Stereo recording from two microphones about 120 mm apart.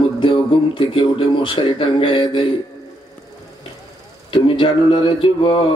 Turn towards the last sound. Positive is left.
turn(degrees=45)  # may be behind; listen again after turning